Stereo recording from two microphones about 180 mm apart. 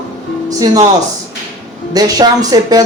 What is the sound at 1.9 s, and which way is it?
Speech, 20° right (ahead or behind).